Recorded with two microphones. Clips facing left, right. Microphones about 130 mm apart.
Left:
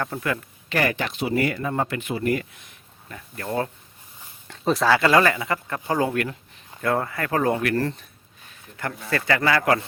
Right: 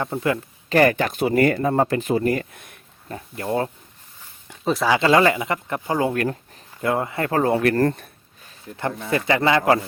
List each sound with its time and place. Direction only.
0.0 s speech: 25° right (ahead or behind)
0.7 s speech: 45° right (ahead or behind)
3.1 s speech: 30° right (ahead or behind)
4.6 s speech: centre (ahead or behind)
4.9 s speech: 20° right (ahead or behind)
7.9 s speech: 55° right (ahead or behind)
9.0 s speech: 20° right (ahead or behind)